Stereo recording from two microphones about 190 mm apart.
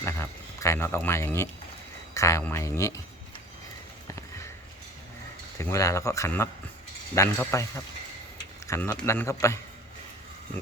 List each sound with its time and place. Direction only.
0.0 s speech: 15° left (ahead or behind)
4.1 s sniff: 15° left (ahead or behind)
5.5 s speech: 15° left (ahead or behind)